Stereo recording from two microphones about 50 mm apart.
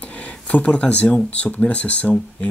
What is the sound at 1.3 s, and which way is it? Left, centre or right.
Speech, left.